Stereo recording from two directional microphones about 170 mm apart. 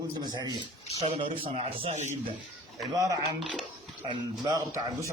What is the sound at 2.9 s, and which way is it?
A man's voice, 20° right (ahead or behind).